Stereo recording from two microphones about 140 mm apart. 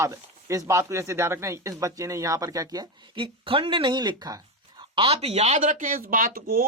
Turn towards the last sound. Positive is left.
turn(degrees=-90)